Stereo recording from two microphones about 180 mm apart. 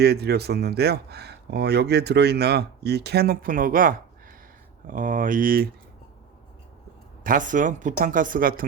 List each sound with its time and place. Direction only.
0.0 s speech: 65° right (ahead or behind)
7.3 s speech: 45° right (ahead or behind)